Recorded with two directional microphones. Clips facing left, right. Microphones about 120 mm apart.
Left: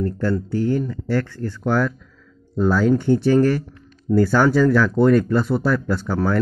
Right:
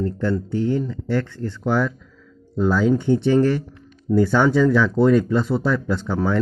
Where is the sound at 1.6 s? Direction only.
Centre (ahead or behind).